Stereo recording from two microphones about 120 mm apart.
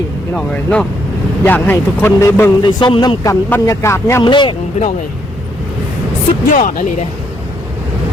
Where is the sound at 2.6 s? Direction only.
40° left (ahead or behind).